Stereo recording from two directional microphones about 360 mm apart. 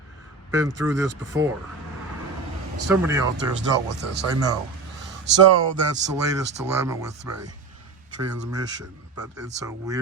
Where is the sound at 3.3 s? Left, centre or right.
Right.